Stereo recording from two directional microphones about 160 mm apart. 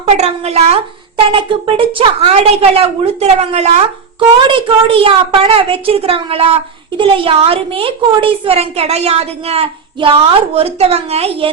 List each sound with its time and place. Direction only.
0.0 s a child's voice: 40° right (ahead or behind)